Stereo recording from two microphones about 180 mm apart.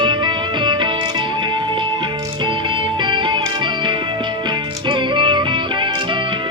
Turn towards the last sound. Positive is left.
turn(degrees=-25)  # may be behind; listen again after turning